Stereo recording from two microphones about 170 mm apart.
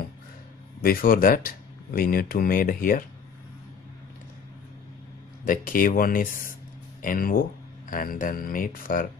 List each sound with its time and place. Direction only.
0.8 s speech: 60° left (ahead or behind)
5.4 s speech: 55° left (ahead or behind)